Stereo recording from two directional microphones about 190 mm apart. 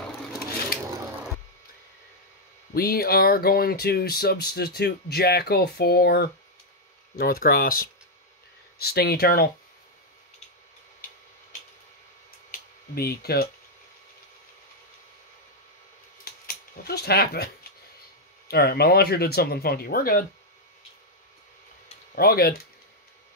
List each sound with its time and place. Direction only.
2.7 s speech: 55° left (ahead or behind)
12.4 s a sound: 55° left (ahead or behind)
16.4 s speech: 55° left (ahead or behind)
18.5 s speech: 55° left (ahead or behind)
22.1 s speech: 50° left (ahead or behind)